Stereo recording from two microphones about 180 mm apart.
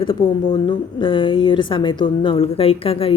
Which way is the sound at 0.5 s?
25° left (ahead or behind).